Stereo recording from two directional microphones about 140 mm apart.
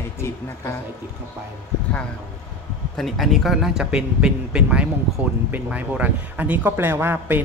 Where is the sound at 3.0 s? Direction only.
Centre (ahead or behind).